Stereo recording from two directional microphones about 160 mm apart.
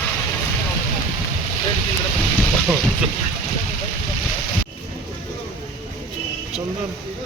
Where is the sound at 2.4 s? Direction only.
5° left (ahead or behind).